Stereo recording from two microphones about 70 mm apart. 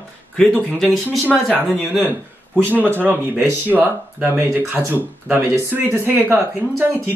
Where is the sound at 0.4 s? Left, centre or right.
Centre.